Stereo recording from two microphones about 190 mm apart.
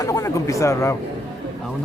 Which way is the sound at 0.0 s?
15° left (ahead or behind).